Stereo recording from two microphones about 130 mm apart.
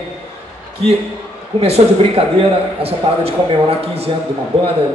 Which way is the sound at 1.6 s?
50° right (ahead or behind).